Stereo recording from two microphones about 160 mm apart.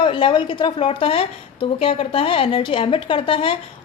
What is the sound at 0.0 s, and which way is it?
A woman's voice, 30° left (ahead or behind).